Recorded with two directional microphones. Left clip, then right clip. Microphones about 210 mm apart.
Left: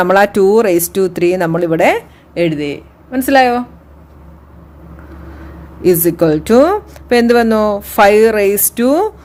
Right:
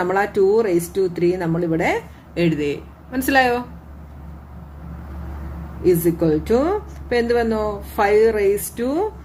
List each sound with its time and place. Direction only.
0.0 s speech: 45° left (ahead or behind)
5.8 s speech: 45° left (ahead or behind)